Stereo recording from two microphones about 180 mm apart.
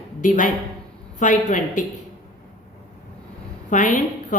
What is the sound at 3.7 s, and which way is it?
Speech, 45° left (ahead or behind).